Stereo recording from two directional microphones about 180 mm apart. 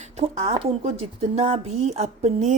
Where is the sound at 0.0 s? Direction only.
35° right (ahead or behind).